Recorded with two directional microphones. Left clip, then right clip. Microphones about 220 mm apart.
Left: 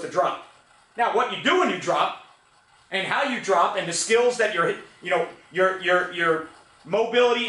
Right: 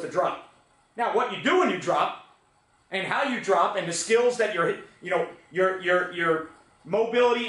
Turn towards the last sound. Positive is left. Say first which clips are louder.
# left 2 dB
turn(degrees=-5)  # may be behind; listen again after turning